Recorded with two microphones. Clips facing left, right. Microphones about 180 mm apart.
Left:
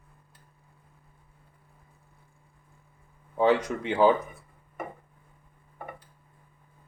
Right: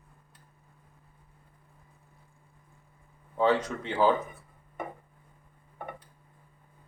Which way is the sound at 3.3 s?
15° left (ahead or behind).